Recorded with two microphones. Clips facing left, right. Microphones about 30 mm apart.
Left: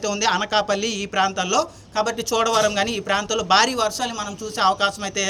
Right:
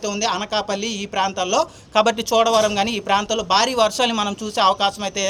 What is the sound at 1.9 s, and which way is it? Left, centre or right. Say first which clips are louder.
Speech: right 6 dB; right.